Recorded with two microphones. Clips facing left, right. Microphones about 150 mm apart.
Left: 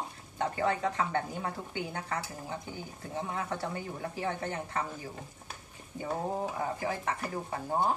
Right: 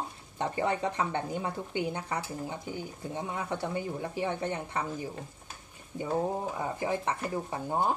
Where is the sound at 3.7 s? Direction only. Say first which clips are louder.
Right 4 dB; 20° right (ahead or behind).